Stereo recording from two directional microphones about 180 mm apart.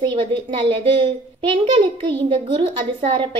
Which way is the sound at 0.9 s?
30° right (ahead or behind).